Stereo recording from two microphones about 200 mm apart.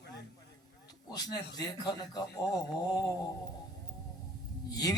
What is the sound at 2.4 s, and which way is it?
Speech, 20° left (ahead or behind).